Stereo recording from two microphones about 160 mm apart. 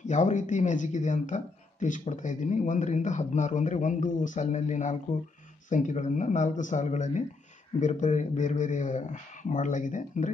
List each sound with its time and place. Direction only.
0.0 s speech: 50° left (ahead or behind)